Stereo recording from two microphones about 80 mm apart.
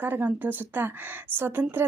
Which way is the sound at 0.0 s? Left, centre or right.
Right.